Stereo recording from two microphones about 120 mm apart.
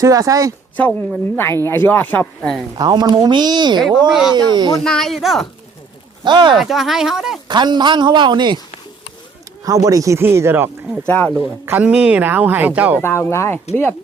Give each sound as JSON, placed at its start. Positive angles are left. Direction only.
{"t": 0.0, "sound": "speech", "side_deg": -30}
{"t": 0.8, "sound": "speech", "side_deg": 10}
{"t": 2.7, "sound": "speech", "side_deg": -35}
{"t": 4.8, "sound": "speech", "side_deg": 5}
{"t": 6.2, "sound": "speech", "side_deg": -40}
{"t": 6.6, "sound": "speech", "side_deg": 0}
{"t": 7.4, "sound": "speech", "side_deg": -40}
{"t": 9.6, "sound": "speech", "side_deg": -30}
{"t": 11.0, "sound": "speech", "side_deg": 15}
{"t": 11.3, "sound": "speech", "side_deg": -20}
{"t": 13.0, "sound": "speech", "side_deg": 20}